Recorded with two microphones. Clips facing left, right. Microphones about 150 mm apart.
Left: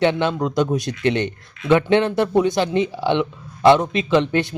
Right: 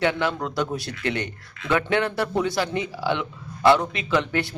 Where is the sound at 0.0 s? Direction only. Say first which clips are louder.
Left 5 dB; 20° left (ahead or behind).